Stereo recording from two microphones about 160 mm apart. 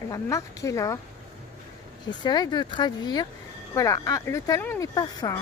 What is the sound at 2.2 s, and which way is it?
Speech, 25° left (ahead or behind).